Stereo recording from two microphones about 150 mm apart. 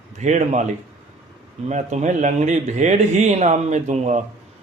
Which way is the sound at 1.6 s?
50° right (ahead or behind).